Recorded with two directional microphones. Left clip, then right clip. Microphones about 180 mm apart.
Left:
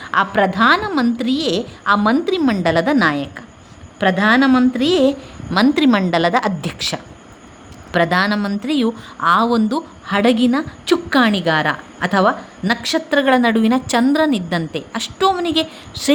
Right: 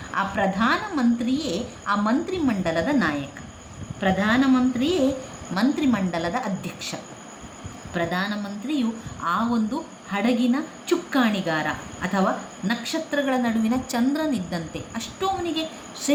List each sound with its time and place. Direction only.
0.1 s speech: 60° left (ahead or behind)